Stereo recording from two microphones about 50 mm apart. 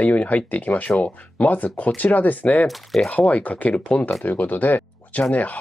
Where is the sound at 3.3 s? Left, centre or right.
Left.